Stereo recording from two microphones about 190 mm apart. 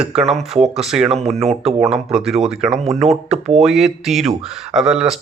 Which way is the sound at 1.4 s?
35° right (ahead or behind).